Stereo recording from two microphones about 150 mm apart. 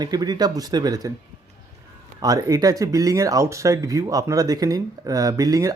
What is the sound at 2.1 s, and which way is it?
Speech, 25° right (ahead or behind).